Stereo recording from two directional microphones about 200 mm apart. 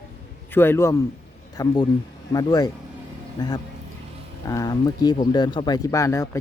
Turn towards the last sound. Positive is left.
turn(degrees=15)  # may be behind; listen again after turning